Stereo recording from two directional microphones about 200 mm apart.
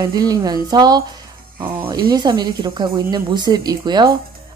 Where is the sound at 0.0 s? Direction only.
20° right (ahead or behind).